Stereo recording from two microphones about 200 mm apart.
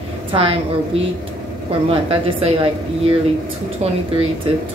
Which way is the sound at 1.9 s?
25° right (ahead or behind).